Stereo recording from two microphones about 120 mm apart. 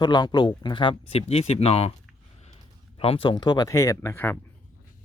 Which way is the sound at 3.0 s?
50° left (ahead or behind).